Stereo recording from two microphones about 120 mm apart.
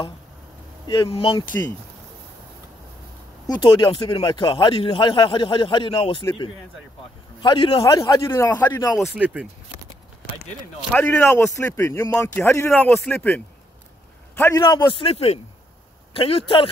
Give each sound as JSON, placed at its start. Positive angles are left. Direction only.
{"t": 0.8, "sound": "speech", "side_deg": 45}
{"t": 3.4, "sound": "a man's voice", "side_deg": 40}
{"t": 7.4, "sound": "speech", "side_deg": 45}
{"t": 7.8, "sound": "a man's voice", "side_deg": 30}
{"t": 8.9, "sound": "speech", "side_deg": -5}
{"t": 10.9, "sound": "a man's voice", "side_deg": 15}
{"t": 15.0, "sound": "speech", "side_deg": 55}